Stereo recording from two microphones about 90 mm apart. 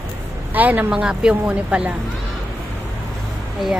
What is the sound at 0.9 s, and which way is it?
A woman's voice, 10° right (ahead or behind).